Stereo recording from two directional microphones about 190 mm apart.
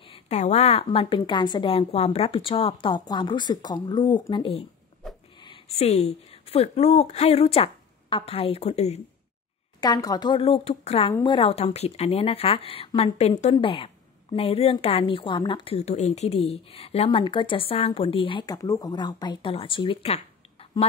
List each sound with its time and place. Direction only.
0.1 s a woman's voice: 35° left (ahead or behind)
9.8 s a woman's voice: 20° left (ahead or behind)